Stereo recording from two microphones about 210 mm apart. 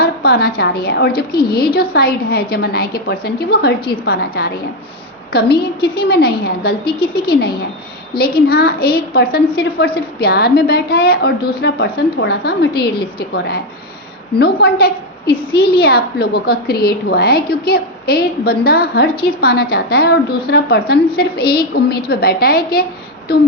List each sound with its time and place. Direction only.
0.0 s a woman's voice: 50° left (ahead or behind)